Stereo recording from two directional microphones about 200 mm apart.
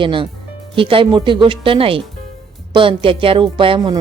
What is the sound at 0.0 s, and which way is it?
Speech, 25° right (ahead or behind).